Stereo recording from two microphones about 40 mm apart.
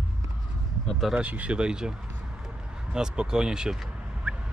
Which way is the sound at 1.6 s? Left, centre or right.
Right.